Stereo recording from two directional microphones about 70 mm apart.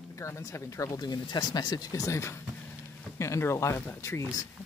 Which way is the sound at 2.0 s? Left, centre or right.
Left.